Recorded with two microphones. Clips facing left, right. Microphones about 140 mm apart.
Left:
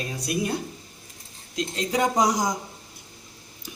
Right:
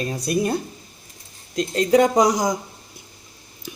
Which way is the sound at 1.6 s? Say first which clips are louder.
Right 8 dB; 60° right (ahead or behind).